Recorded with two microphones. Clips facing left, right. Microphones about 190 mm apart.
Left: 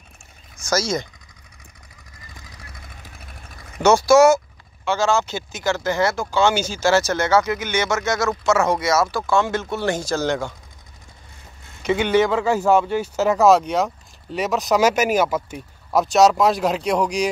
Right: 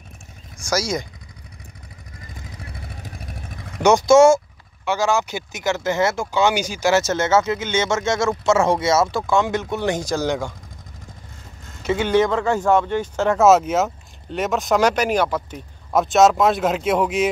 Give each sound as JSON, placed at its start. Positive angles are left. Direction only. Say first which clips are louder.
{"t": 0.7, "sound": "a man's voice", "louder": "left 1 dB", "side_deg": -10}
{"t": 2.6, "sound": "vehicle", "louder": "right 7 dB", "side_deg": -35}
{"t": 3.8, "sound": "a man's voice", "louder": "right 1 dB", "side_deg": -20}
{"t": 11.8, "sound": "speech", "louder": "even", "side_deg": 0}